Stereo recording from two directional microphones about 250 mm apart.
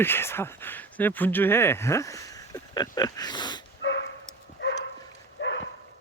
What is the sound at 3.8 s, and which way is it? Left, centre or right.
Dog, left.